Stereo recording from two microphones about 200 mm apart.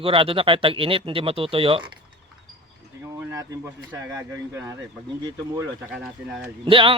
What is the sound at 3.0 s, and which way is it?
Speech, 15° right (ahead or behind).